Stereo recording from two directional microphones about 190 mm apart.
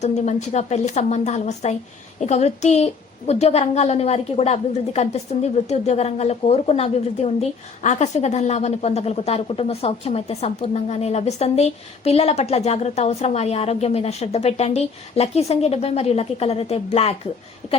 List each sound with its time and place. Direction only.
0.0 s a woman's voice: 35° left (ahead or behind)